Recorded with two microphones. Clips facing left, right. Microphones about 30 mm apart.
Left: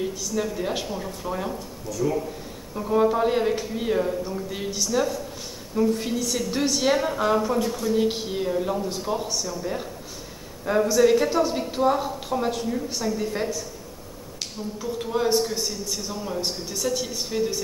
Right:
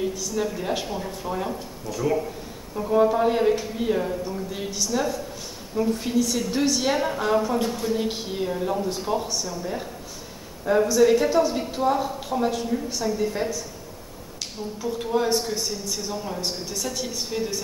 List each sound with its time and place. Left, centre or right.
0.1 s a man's voice: centre
1.9 s speech: right
2.9 s a man's voice: centre
7.5 s speech: centre
8.0 s a man's voice: centre
10.9 s a man's voice: centre